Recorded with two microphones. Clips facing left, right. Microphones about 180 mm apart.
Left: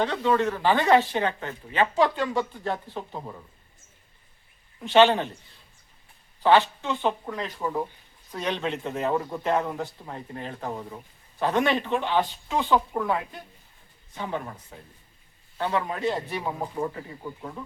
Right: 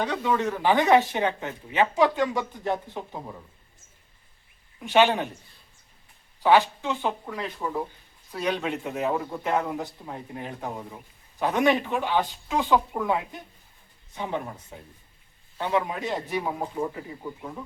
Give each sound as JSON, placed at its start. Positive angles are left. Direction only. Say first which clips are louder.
{"t": 0.0, "sound": "speech", "louder": "left 2 dB", "side_deg": -10}
{"t": 4.8, "sound": "speech", "louder": "left 2 dB", "side_deg": -10}
{"t": 6.4, "sound": "speech", "louder": "even", "side_deg": -10}
{"t": 16.7, "sound": "speech", "louder": "even", "side_deg": 0}